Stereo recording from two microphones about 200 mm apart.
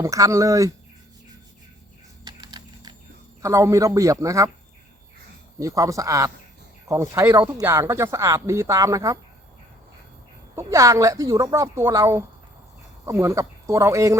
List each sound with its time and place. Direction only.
0.0 s speech: 15° right (ahead or behind)
2.2 s typing: 20° right (ahead or behind)
3.4 s speech: 15° right (ahead or behind)
5.5 s speech: 15° right (ahead or behind)
10.5 s speech: 15° right (ahead or behind)